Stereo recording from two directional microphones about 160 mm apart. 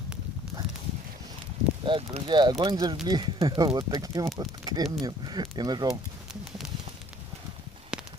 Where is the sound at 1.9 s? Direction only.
30° right (ahead or behind).